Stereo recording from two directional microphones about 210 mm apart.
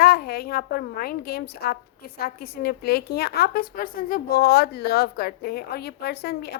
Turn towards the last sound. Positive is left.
turn(degrees=50)  # may be behind; listen again after turning